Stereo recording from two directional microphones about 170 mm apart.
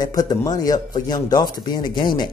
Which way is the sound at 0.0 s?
25° left (ahead or behind).